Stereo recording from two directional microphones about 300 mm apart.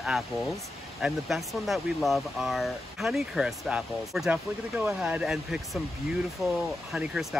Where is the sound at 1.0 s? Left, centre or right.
Centre.